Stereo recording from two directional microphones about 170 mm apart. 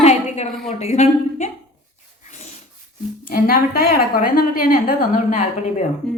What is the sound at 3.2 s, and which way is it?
A woman's voice, 60° left (ahead or behind).